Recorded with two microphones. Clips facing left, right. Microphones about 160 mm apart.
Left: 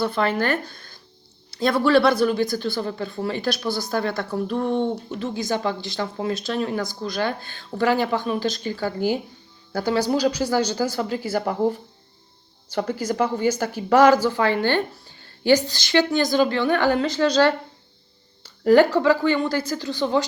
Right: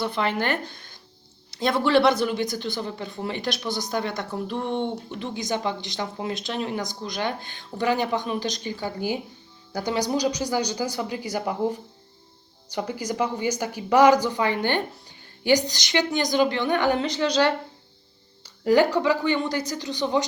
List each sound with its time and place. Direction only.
0.0 s speech: 15° right (ahead or behind)
18.7 s speech: 15° right (ahead or behind)